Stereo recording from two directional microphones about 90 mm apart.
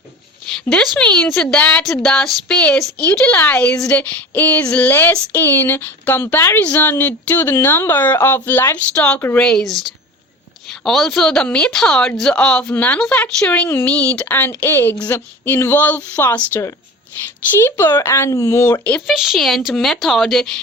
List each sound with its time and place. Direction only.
0.7 s a woman's voice: 5° left (ahead or behind)
17.6 s speech: 30° left (ahead or behind)
19.0 s speech: 5° right (ahead or behind)